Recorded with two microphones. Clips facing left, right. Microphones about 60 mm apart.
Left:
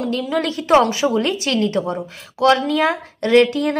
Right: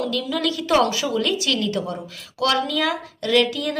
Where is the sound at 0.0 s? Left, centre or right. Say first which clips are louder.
Left 3 dB; left.